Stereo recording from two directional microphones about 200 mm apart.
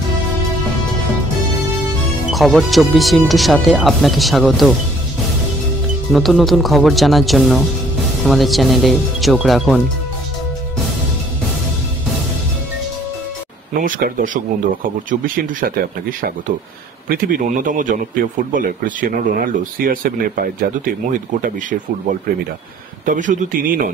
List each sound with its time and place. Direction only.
2.3 s speech: centre (ahead or behind)
6.1 s speech: centre (ahead or behind)
13.7 s a man's voice: 40° right (ahead or behind)